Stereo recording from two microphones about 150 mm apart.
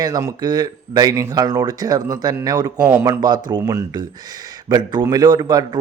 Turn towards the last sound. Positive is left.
turn(degrees=-25)  # may be behind; listen again after turning